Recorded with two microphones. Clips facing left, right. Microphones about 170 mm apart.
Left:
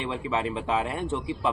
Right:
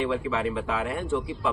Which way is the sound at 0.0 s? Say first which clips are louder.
Right 3 dB; 20° left (ahead or behind).